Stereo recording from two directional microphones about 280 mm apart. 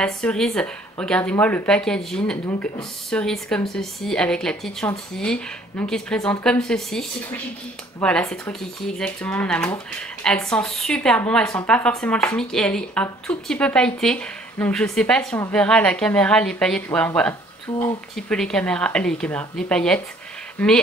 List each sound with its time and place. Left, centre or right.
0.0 s a woman's voice: centre
17.7 s speech: centre
18.1 s a woman's voice: centre